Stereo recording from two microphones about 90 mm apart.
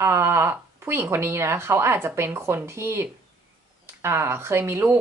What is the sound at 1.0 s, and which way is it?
Speech, 25° right (ahead or behind).